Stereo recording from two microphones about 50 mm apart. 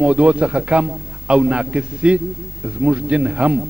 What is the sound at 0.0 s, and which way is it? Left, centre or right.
A man's voice, right.